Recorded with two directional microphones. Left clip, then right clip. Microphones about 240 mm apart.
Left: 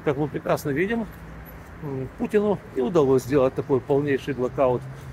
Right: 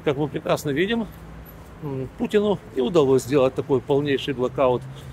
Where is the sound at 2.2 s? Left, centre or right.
Right.